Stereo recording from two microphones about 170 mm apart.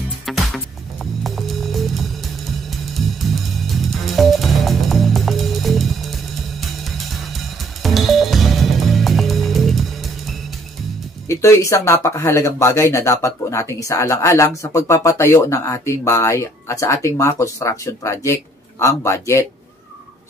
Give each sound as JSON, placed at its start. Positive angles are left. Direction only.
{"t": 1.2, "sound": "music", "side_deg": 0}
{"t": 7.8, "sound": "music", "side_deg": 0}
{"t": 11.2, "sound": "speech", "side_deg": 15}